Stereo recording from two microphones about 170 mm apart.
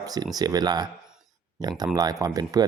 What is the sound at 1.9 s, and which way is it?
Speech, 20° right (ahead or behind).